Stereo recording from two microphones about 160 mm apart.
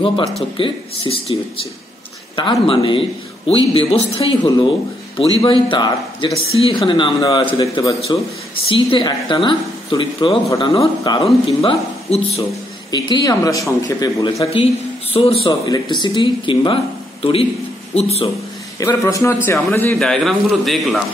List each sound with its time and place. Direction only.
0.0 s speech: 30° left (ahead or behind)
2.6 s speech: 35° left (ahead or behind)
12.9 s speech: 25° left (ahead or behind); by 18.3 s 40° left (ahead or behind)
18.8 s a man's voice: 20° left (ahead or behind)
20.0 s a man's voice: centre (ahead or behind)